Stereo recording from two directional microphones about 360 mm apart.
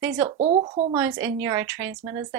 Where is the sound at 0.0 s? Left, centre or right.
Centre.